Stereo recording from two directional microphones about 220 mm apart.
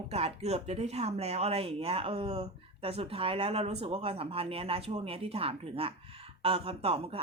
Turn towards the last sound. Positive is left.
turn(degrees=-25)  # may be behind; listen again after turning